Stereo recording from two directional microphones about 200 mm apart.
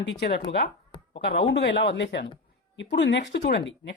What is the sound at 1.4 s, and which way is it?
Speech, 60° left (ahead or behind).